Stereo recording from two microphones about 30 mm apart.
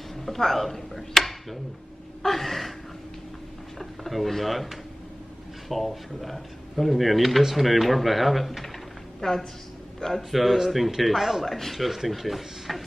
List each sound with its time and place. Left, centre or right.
0.1 s speech: centre
2.2 s a sound: centre
3.7 s speech: centre
9.2 s a woman's voice: left
10.1 s speech: centre
11.4 s speech: centre